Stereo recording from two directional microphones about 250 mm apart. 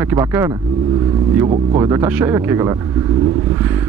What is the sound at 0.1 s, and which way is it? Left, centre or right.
Speech, centre.